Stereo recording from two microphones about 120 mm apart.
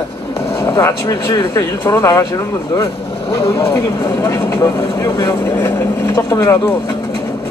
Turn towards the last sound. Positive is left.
turn(degrees=25)  # may be behind; listen again after turning